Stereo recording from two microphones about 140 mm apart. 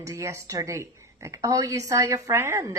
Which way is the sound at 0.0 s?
20° right (ahead or behind).